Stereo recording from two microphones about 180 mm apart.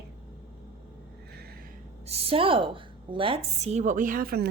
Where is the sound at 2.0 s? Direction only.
35° right (ahead or behind).